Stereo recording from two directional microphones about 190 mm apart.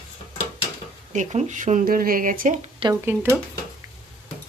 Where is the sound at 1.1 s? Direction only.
40° right (ahead or behind).